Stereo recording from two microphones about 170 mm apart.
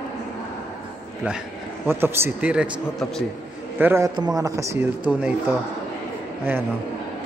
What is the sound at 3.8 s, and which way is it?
A man's voice, 15° right (ahead or behind).